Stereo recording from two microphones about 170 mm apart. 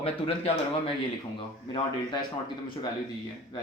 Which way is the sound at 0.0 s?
35° left (ahead or behind).